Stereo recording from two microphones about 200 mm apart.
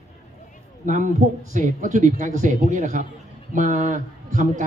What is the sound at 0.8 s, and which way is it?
Speech, 40° right (ahead or behind).